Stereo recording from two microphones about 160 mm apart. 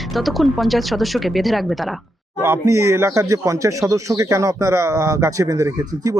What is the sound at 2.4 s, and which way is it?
A woman's voice, 15° right (ahead or behind).